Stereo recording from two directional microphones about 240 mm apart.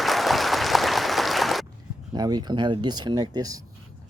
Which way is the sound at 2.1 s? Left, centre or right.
Centre.